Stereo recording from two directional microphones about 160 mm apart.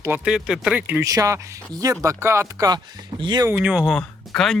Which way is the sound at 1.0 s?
20° right (ahead or behind).